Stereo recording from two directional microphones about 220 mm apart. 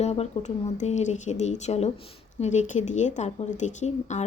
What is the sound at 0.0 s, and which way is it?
A woman's voice, 30° left (ahead or behind).